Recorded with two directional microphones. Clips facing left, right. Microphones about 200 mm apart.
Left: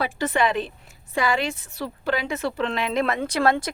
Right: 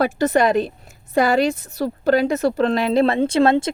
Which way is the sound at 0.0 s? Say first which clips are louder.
Right 6 dB; 40° right (ahead or behind).